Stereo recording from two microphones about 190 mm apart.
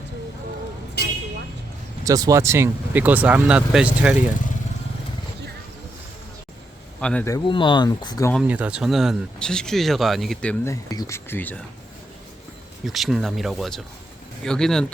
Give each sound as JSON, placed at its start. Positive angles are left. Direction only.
{"t": 2.0, "sound": "speech", "side_deg": -20}
{"t": 7.0, "sound": "speech", "side_deg": 5}
{"t": 7.3, "sound": "speech", "side_deg": 20}
{"t": 8.4, "sound": "speech", "side_deg": -5}
{"t": 12.8, "sound": "speech", "side_deg": 0}